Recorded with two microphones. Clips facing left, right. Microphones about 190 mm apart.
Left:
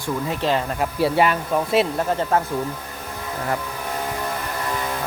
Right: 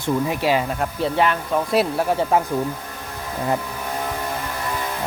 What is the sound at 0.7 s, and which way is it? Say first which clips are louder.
Speech: left 2 dB; 5° left (ahead or behind).